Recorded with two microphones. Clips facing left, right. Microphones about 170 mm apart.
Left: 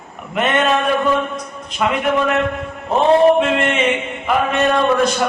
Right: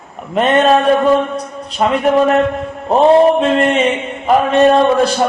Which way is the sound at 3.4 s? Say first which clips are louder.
Right 4 dB; 35° right (ahead or behind).